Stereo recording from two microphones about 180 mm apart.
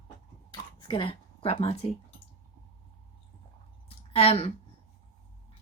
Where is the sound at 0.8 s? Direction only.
25° left (ahead or behind).